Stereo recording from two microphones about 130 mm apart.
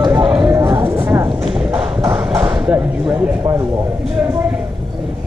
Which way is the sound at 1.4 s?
5° right (ahead or behind).